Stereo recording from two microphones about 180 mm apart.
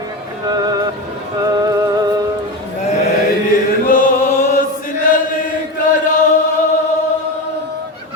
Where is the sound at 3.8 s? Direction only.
50° left (ahead or behind).